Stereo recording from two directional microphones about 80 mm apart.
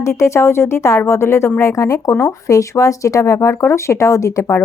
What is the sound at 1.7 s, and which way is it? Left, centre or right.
Speech, left.